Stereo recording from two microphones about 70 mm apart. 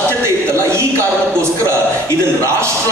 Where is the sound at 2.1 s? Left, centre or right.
Right.